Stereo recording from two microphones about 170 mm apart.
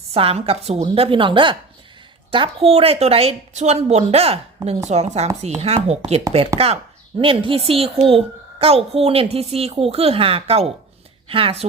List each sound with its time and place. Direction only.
0.1 s a child's voice: 35° right (ahead or behind)